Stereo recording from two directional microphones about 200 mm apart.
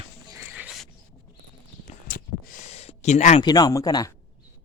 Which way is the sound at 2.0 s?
45° left (ahead or behind).